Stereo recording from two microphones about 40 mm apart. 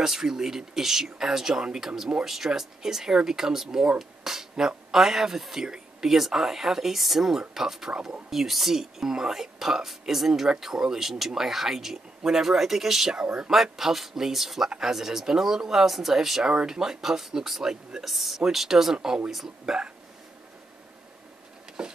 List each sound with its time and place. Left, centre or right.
0.0 s speech: centre
13.1 s speech: right
13.5 s speech: centre
18.9 s speech: right
19.3 s speech: centre
21.8 s a sound: centre